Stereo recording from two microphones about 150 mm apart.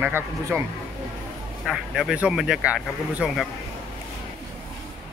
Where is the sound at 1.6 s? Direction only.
5° right (ahead or behind).